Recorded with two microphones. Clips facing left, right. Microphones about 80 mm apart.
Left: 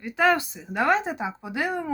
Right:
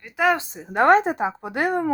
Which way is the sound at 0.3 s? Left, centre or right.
Right.